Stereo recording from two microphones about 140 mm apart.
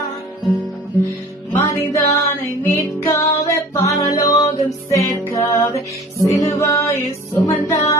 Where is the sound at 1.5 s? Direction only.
15° left (ahead or behind).